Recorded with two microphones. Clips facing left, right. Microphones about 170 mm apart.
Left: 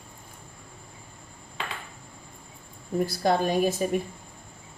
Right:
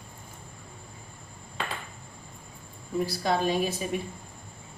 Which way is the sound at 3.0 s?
45° left (ahead or behind).